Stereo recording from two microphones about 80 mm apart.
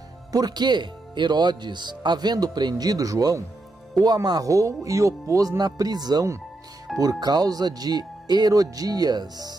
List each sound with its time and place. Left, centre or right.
0.3 s speech: right